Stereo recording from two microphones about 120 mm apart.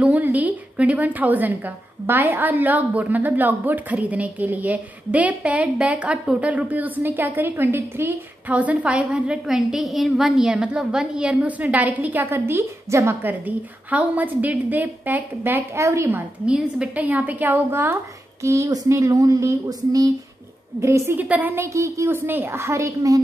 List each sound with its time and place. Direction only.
0.0 s a woman's voice: 15° right (ahead or behind)
16.4 s a woman's voice: 10° right (ahead or behind); by 23.2 s 25° right (ahead or behind)